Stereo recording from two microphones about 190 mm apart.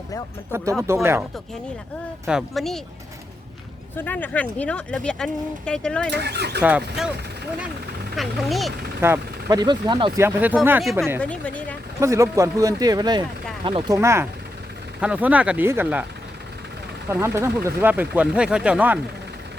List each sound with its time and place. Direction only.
0.5 s speech: 15° right (ahead or behind)
2.2 s speech: centre (ahead or behind)
3.9 s speech: 10° left (ahead or behind)
6.1 s speech: 60° right (ahead or behind)
6.6 s speech: 10° right (ahead or behind)
8.1 s speech: centre (ahead or behind)
9.0 s speech: 15° right (ahead or behind)
10.2 s speech: 10° right (ahead or behind)
11.2 s speech: 5° left (ahead or behind)
11.9 s speech: 15° right (ahead or behind)
17.1 s speech: 15° right (ahead or behind)